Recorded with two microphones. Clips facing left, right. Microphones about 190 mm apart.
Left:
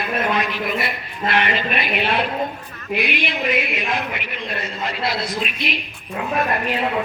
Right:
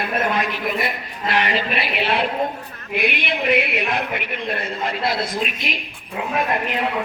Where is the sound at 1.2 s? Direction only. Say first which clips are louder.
Even; 35° right (ahead or behind).